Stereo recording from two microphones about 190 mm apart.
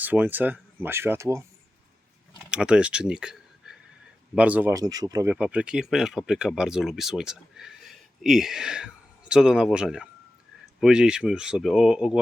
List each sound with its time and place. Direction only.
0.0 s speech: 10° right (ahead or behind)
2.5 s speech: 5° right (ahead or behind)